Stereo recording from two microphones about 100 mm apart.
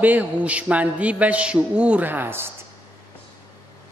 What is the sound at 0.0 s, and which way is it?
A man's voice, 15° right (ahead or behind).